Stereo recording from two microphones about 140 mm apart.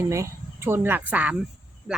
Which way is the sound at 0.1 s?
20° right (ahead or behind).